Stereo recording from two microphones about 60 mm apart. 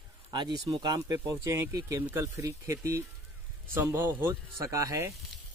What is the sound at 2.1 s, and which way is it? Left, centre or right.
Speech, right.